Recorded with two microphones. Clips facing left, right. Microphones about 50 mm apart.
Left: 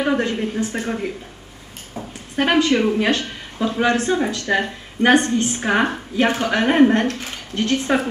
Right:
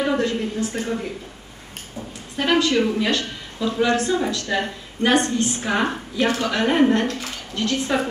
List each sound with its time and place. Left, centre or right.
0.0 s speech: left
2.0 s a woman's voice: left